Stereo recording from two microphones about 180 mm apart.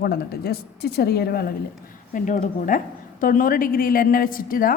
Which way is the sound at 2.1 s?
45° left (ahead or behind).